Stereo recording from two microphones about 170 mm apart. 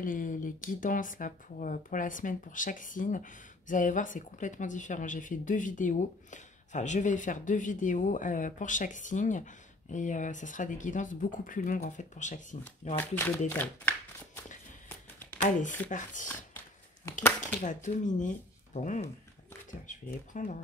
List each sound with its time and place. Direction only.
0.0 s speech: 50° left (ahead or behind)
12.9 s speech: 10° left (ahead or behind)
15.4 s speech: 45° left (ahead or behind)
16.3 s a sound: 15° left (ahead or behind)
17.6 s speech: 45° left (ahead or behind)